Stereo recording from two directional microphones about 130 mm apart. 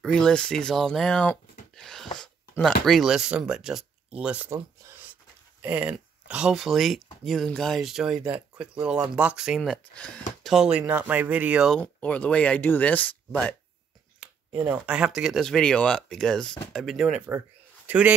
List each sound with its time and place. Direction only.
0.0 s speech: 5° left (ahead or behind)
1.8 s a sound: 5° left (ahead or behind)
2.5 s speech: 5° left (ahead or behind)
5.6 s speech: 10° right (ahead or behind); by 10.2 s 10° left (ahead or behind)
10.4 s speech: 5° right (ahead or behind)
11.7 s speech: 10° left (ahead or behind)
14.6 s speech: 10° right (ahead or behind)